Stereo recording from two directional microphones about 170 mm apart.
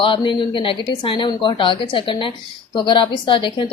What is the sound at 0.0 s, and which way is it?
A woman's voice, 30° left (ahead or behind).